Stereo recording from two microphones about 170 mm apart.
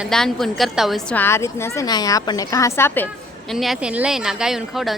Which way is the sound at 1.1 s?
15° left (ahead or behind).